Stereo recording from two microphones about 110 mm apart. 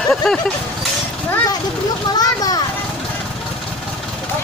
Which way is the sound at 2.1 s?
35° left (ahead or behind).